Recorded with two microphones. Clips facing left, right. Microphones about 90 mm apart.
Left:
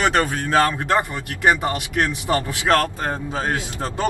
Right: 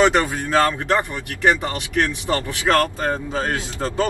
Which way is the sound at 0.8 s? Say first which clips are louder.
Even; 15° left (ahead or behind).